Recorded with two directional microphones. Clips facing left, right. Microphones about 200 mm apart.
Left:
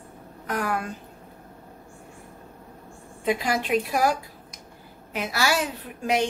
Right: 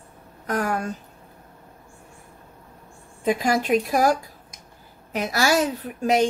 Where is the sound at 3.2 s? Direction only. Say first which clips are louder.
Right 3 dB; 45° right (ahead or behind).